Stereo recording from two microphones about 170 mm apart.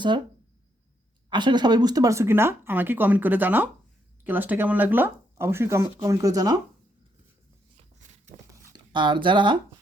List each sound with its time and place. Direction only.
1.3 s speech: 25° right (ahead or behind)
8.6 s speech: 25° right (ahead or behind)